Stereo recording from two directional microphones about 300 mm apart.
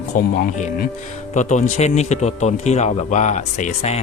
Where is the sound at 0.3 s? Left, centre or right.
Left.